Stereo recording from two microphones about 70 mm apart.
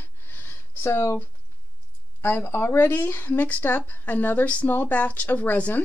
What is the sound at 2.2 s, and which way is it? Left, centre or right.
Speech, left.